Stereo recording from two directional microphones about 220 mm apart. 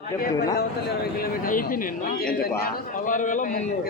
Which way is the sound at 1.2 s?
40° left (ahead or behind).